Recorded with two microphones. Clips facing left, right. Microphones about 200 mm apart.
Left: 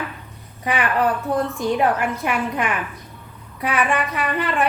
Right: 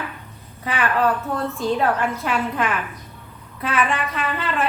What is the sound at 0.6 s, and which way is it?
A woman's voice, 15° left (ahead or behind).